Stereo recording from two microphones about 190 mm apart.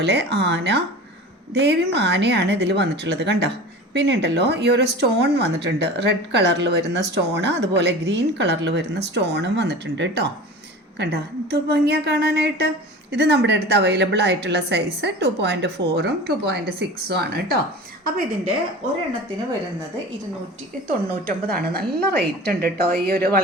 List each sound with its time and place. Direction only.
0.0 s a woman's voice: 60° right (ahead or behind)
20.8 s a woman's voice: 50° right (ahead or behind)